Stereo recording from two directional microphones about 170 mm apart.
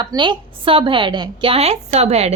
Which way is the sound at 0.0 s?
25° right (ahead or behind).